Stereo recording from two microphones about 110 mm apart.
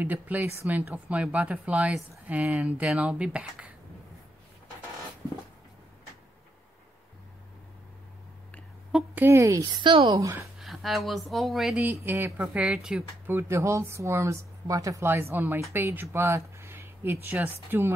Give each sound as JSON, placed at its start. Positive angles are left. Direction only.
{"t": 0.0, "sound": "speech", "side_deg": -15}
{"t": 8.9, "sound": "speech", "side_deg": -15}
{"t": 10.0, "sound": "speech", "side_deg": -35}
{"t": 10.6, "sound": "speech", "side_deg": 0}
{"t": 11.7, "sound": "speech", "side_deg": -20}
{"t": 13.3, "sound": "speech", "side_deg": -25}
{"t": 15.0, "sound": "speech", "side_deg": -20}